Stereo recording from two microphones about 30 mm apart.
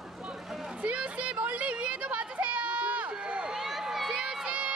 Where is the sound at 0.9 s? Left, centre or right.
Right.